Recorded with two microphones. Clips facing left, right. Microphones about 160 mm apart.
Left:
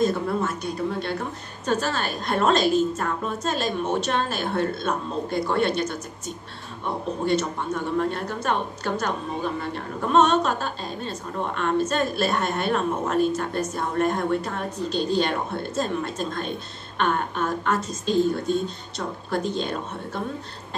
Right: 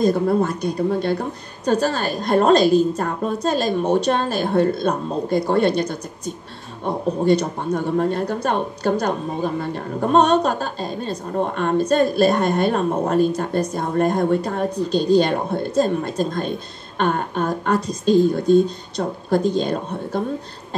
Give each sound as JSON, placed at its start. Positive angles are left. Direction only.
{"t": 0.0, "sound": "speech", "side_deg": -35}